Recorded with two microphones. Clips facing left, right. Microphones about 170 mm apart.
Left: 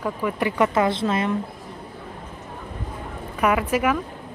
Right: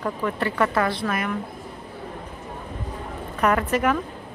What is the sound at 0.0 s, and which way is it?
Speech, 10° left (ahead or behind).